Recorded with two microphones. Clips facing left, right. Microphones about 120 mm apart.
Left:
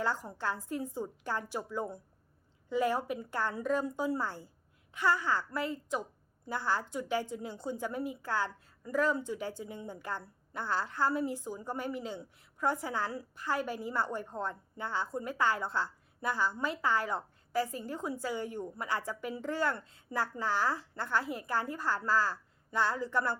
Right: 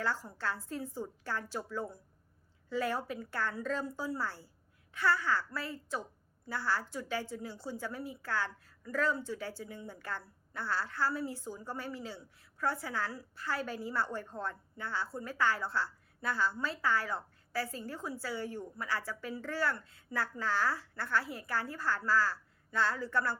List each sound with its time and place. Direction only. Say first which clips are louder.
0.0 s a woman's voice: left 2 dB; 15° left (ahead or behind)